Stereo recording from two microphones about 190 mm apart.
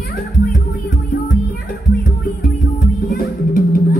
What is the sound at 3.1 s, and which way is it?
Music, 50° left (ahead or behind).